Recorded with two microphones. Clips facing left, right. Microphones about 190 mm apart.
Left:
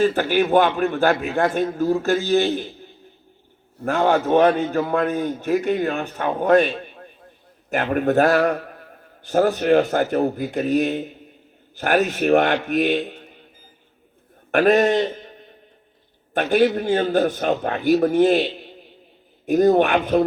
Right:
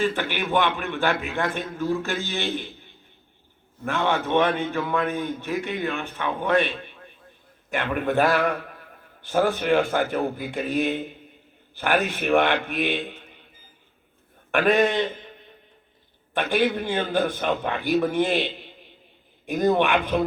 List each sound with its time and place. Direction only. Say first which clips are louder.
0.0 s a man's voice: left 7 dB; 40° left (ahead or behind)
14.5 s a man's voice: left 4 dB; 40° left (ahead or behind)